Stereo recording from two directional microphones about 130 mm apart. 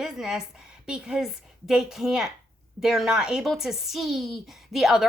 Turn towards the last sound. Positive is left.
turn(degrees=-5)  # may be behind; listen again after turning